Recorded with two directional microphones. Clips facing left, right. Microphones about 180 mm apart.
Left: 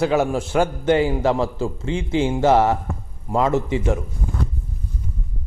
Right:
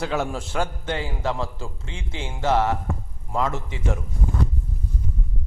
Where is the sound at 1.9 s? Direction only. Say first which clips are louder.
Left 16 dB; 55° left (ahead or behind).